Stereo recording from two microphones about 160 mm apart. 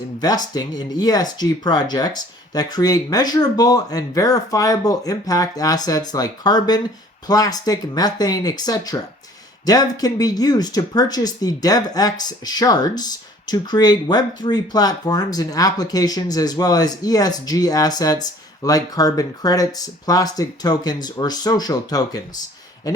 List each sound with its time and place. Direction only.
0.2 s speech: 25° left (ahead or behind)